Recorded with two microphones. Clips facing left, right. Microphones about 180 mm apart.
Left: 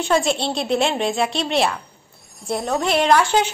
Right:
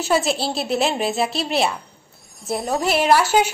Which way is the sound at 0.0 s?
5° right (ahead or behind).